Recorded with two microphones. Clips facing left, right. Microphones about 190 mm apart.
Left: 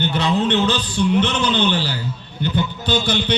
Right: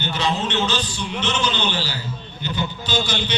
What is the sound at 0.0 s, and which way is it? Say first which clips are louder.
A man's voice: left 5 dB; 60° left (ahead or behind).